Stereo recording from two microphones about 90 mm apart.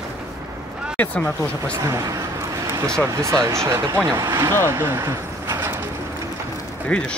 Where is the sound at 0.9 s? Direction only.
15° left (ahead or behind).